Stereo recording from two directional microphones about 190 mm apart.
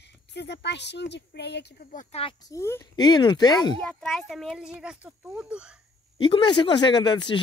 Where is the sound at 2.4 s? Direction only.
15° left (ahead or behind).